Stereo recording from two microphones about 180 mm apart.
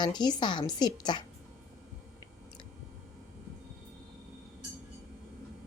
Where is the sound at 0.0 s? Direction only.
25° left (ahead or behind).